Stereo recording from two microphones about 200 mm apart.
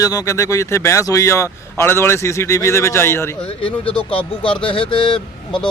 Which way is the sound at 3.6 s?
25° left (ahead or behind).